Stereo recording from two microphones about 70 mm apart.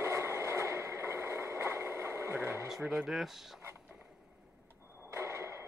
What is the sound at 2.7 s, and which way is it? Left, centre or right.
Speech, centre.